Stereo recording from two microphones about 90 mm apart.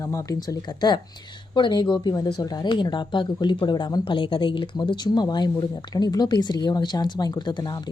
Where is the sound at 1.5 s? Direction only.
55° left (ahead or behind).